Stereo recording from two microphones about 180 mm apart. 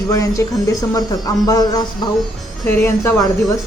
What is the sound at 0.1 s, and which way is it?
A woman's voice, 15° left (ahead or behind).